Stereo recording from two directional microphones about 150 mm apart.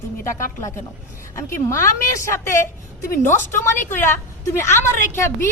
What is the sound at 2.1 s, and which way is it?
A woman's voice, 20° left (ahead or behind).